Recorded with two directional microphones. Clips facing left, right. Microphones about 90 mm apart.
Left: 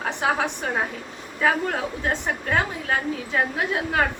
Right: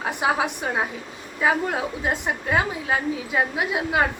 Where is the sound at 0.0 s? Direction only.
10° right (ahead or behind).